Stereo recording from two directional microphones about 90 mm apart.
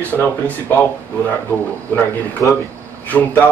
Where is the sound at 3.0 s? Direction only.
20° left (ahead or behind).